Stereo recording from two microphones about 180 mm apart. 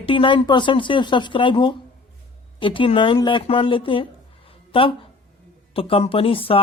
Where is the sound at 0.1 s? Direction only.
30° left (ahead or behind).